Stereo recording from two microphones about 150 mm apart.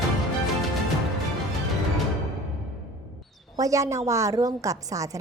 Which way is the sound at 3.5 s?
20° right (ahead or behind).